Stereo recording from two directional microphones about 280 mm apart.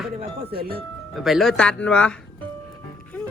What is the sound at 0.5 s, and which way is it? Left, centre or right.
Speech, right.